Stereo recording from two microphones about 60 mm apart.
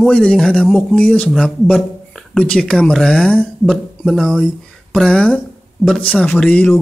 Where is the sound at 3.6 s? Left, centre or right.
Centre.